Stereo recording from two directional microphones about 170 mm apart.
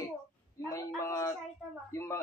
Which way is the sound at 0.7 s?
20° left (ahead or behind).